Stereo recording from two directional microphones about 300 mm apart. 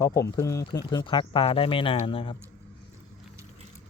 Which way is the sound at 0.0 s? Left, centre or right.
Centre.